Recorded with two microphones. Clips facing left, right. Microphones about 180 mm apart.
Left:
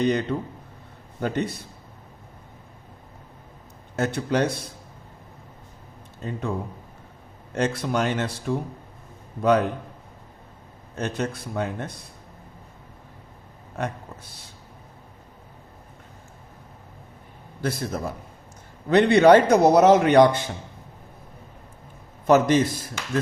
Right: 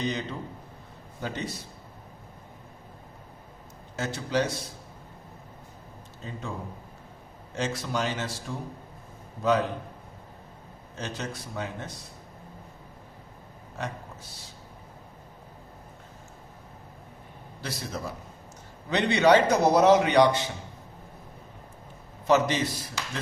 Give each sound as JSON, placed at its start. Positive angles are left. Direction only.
{"t": 0.0, "sound": "speech", "side_deg": 60}
{"t": 3.9, "sound": "speech", "side_deg": 60}
{"t": 7.5, "sound": "speech", "side_deg": 55}
{"t": 10.9, "sound": "speech", "side_deg": 55}
{"t": 17.6, "sound": "a man's voice", "side_deg": 50}
{"t": 22.3, "sound": "a man's voice", "side_deg": 50}